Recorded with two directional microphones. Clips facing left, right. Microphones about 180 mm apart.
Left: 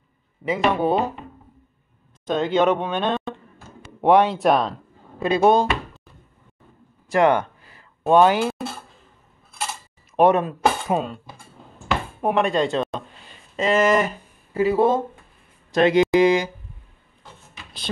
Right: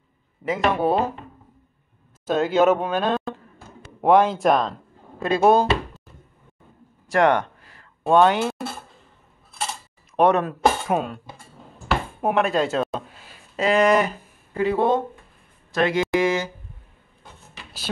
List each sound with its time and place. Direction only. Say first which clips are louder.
0.5 s speech: left 1 dB; centre (ahead or behind)
2.2 s speech: right 1 dB; 5° right (ahead or behind)
7.1 s a sound: left 1 dB; centre (ahead or behind)
10.1 s speech: left 1 dB; 5° left (ahead or behind)
12.2 s speech: left 1 dB; 5° right (ahead or behind)
15.7 s a sound: left 5 dB; 20° left (ahead or behind)